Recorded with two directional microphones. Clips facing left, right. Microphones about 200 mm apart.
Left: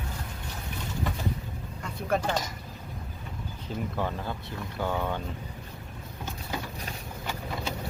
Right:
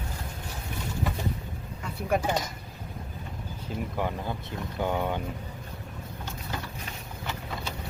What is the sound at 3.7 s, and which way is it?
Speech, 5° right (ahead or behind).